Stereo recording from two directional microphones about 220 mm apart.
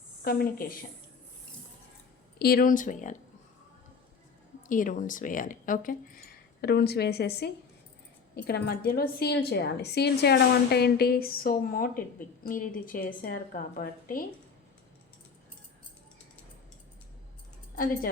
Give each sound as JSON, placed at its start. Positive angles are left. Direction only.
{"t": 0.3, "sound": "a woman's voice", "side_deg": 40}
{"t": 2.4, "sound": "speech", "side_deg": 40}
{"t": 4.7, "sound": "a woman's voice", "side_deg": 35}